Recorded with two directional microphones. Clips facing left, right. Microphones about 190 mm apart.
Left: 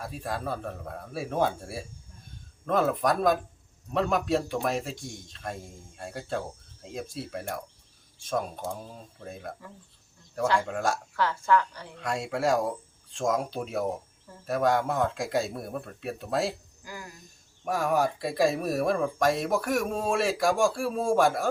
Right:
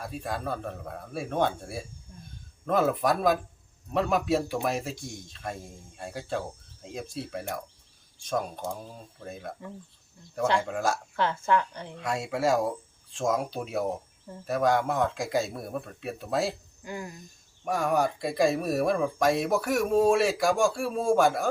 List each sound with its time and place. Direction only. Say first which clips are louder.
0.0 s speech: even; centre (ahead or behind)
10.6 s speech: even; centre (ahead or behind)
11.2 s a woman's voice: left 1 dB; 20° right (ahead or behind)
11.9 s speech: even; centre (ahead or behind)
16.8 s a woman's voice: right 6 dB; 25° right (ahead or behind)
17.7 s speech: even; centre (ahead or behind)